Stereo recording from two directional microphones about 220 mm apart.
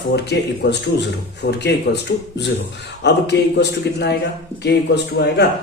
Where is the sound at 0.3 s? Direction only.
50° left (ahead or behind).